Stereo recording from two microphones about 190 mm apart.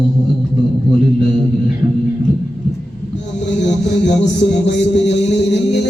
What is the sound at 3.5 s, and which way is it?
Music, 65° left (ahead or behind).